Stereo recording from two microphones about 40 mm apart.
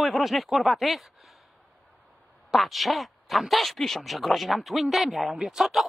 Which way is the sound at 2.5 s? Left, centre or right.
Centre.